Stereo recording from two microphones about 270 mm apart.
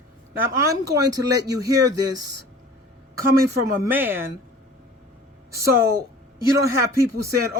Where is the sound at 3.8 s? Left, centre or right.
Centre.